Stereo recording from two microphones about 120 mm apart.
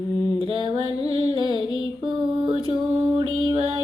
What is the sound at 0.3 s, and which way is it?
Mantra, 50° right (ahead or behind).